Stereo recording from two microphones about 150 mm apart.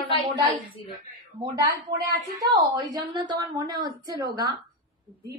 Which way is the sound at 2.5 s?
30° right (ahead or behind).